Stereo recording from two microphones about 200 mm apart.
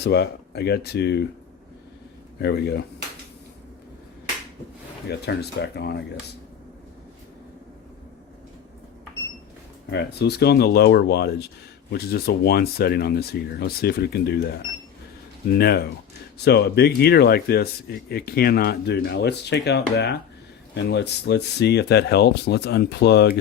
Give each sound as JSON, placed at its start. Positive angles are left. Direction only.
{"t": 0.0, "sound": "speech", "side_deg": 55}
{"t": 2.4, "sound": "speech", "side_deg": 55}
{"t": 5.0, "sound": "speech", "side_deg": 55}
{"t": 9.9, "sound": "speech", "side_deg": 55}